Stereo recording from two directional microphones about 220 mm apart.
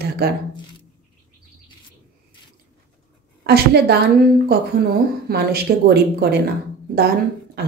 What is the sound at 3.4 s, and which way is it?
A woman's voice, 45° right (ahead or behind).